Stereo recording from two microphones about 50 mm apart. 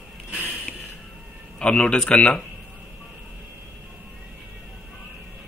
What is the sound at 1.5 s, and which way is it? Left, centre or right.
Speech, left.